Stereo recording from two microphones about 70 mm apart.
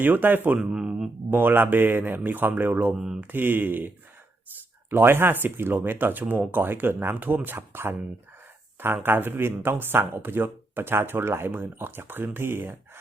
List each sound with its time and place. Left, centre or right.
0.0 s speech: right
0.6 s a sound: centre
1.3 s speech: right
9.0 s speech: right